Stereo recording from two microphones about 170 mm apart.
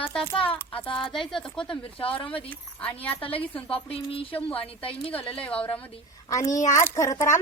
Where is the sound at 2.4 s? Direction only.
10° left (ahead or behind).